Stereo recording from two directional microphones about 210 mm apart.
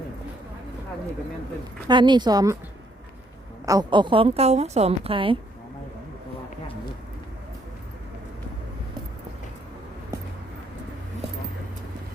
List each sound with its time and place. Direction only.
1.9 s a woman's voice: 20° right (ahead or behind)
3.7 s a woman's voice: 20° right (ahead or behind)